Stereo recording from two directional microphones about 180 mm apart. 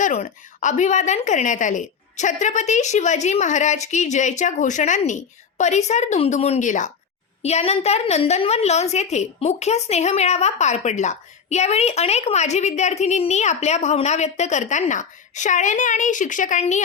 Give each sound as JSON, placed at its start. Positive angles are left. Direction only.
{"t": 0.0, "sound": "a woman's voice", "side_deg": 40}